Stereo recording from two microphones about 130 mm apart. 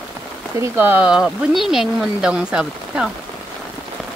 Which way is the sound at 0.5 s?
20° right (ahead or behind).